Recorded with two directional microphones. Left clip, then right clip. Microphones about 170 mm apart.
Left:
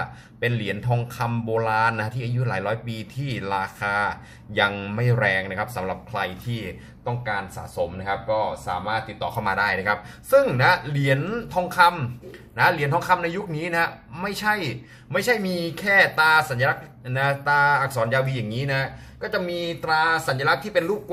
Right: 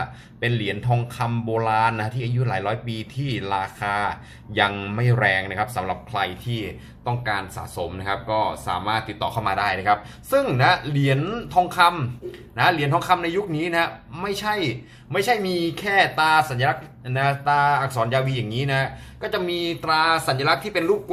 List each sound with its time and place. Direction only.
0.0 s a man's voice: centre (ahead or behind)
7.0 s speech: 20° right (ahead or behind)
9.4 s a man's voice: 5° right (ahead or behind)